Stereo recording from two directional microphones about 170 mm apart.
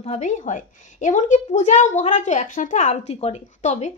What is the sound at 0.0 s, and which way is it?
A woman's voice, 40° left (ahead or behind).